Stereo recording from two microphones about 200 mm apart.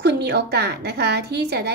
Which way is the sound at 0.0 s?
55° right (ahead or behind).